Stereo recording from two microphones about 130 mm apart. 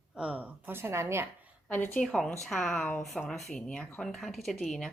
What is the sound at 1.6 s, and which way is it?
A woman's voice, 15° left (ahead or behind).